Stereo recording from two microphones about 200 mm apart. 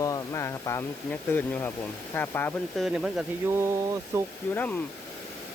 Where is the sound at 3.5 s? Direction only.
15° right (ahead or behind).